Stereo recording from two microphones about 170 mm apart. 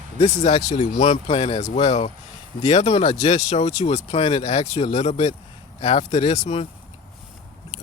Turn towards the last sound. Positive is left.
turn(degrees=40)  # may be behind; listen again after turning